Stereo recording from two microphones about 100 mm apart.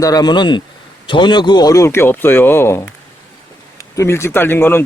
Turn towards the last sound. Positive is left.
turn(degrees=20)  # may be behind; listen again after turning